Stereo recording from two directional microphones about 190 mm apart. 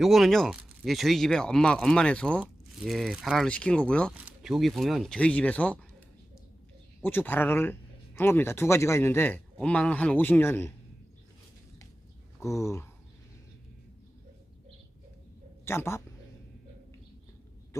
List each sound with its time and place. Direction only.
0.0 s speech: centre (ahead or behind)
4.2 s speech: 5° right (ahead or behind)
7.0 s speech: 10° left (ahead or behind)
12.4 s speech: 15° left (ahead or behind)
15.6 s speech: 10° left (ahead or behind)